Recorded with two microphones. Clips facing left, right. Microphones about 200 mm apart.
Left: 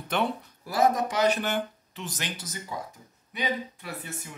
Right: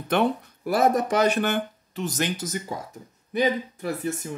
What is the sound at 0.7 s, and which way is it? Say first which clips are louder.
Speech: right 3 dB; 60° right (ahead or behind).